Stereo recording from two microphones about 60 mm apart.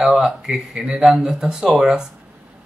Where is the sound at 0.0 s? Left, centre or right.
Centre.